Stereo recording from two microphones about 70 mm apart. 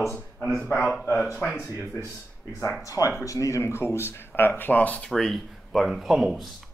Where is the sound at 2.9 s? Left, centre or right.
Left.